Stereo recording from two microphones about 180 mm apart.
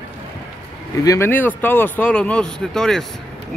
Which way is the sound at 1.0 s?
15° left (ahead or behind).